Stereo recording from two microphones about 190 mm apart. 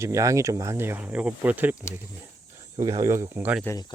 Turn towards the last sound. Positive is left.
turn(degrees=15)  # may be behind; listen again after turning